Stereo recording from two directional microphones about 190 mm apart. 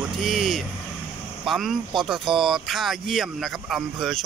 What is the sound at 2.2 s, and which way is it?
Speech, 25° right (ahead or behind).